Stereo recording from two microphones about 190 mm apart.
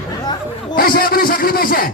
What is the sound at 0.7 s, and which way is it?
A man's voice, 50° left (ahead or behind).